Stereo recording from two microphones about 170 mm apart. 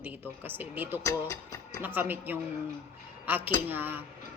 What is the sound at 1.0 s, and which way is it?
Speech, 20° left (ahead or behind).